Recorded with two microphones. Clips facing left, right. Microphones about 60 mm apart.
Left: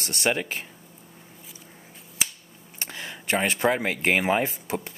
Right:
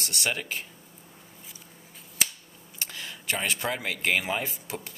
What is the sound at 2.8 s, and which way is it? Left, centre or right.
Speech, left.